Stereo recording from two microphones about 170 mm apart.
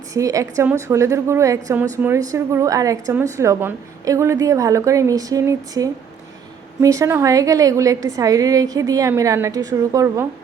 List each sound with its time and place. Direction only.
0.1 s a woman's voice: 20° right (ahead or behind)